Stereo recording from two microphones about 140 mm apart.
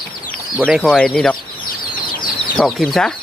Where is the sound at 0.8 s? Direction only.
5° left (ahead or behind).